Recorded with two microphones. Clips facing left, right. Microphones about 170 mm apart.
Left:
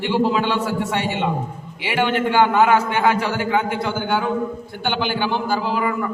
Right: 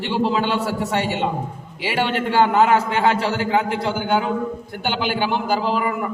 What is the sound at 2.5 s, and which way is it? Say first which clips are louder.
A man's voice: even; 30° right (ahead or behind).